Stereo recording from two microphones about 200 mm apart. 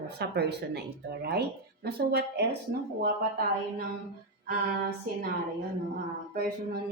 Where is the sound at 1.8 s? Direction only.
55° right (ahead or behind).